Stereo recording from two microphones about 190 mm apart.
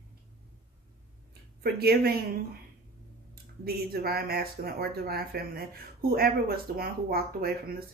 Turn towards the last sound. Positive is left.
turn(degrees=-50)  # may be behind; listen again after turning